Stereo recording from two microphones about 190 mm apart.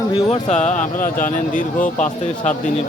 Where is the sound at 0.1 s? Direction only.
35° left (ahead or behind).